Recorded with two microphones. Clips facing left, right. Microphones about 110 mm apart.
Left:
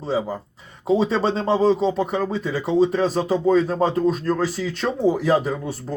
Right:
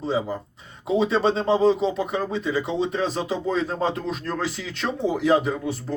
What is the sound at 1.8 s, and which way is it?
Speech, 35° left (ahead or behind).